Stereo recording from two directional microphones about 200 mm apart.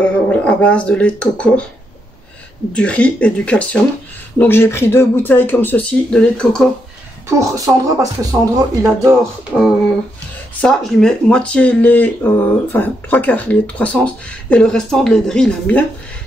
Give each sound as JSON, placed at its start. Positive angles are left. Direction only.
{"t": 0.0, "sound": "speech", "side_deg": 5}
{"t": 2.7, "sound": "speech", "side_deg": 5}
{"t": 7.2, "sound": "speech", "side_deg": -15}
{"t": 10.6, "sound": "speech", "side_deg": 5}